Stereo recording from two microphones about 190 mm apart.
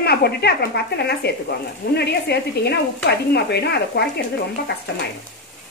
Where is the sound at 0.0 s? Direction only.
55° left (ahead or behind).